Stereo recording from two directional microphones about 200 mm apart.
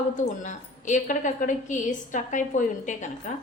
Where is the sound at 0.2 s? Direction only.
40° left (ahead or behind).